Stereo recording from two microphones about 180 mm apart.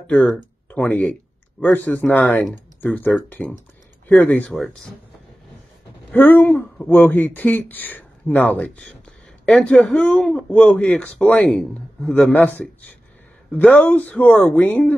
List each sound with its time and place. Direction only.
0.0 s speech: 5° left (ahead or behind)
6.1 s speech: 10° left (ahead or behind)